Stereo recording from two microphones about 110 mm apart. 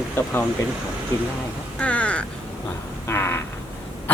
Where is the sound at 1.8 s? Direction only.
10° left (ahead or behind).